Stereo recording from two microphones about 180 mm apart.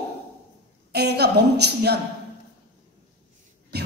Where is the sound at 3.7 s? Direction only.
65° right (ahead or behind).